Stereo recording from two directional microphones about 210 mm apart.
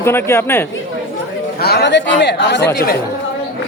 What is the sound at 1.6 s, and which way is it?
Speech, 50° left (ahead or behind).